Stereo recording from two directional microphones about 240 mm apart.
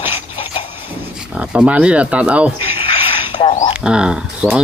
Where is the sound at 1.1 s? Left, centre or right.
Centre.